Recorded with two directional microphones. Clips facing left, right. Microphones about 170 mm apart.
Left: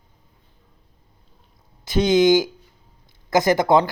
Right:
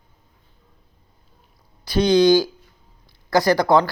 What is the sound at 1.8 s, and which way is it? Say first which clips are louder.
Speech: right 1 dB; 20° left (ahead or behind).